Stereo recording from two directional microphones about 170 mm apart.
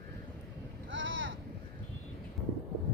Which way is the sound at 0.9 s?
90° right.